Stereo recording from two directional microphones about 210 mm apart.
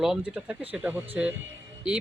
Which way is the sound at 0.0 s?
5° right (ahead or behind).